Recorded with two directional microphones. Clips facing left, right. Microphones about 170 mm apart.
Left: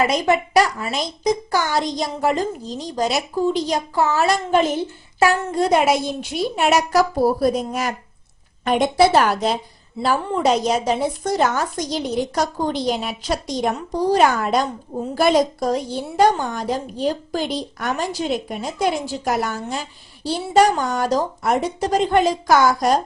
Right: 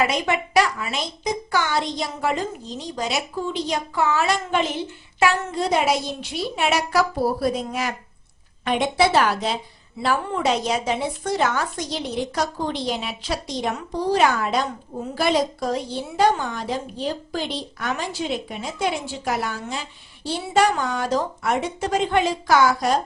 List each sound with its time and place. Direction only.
0.0 s a woman's voice: 40° left (ahead or behind)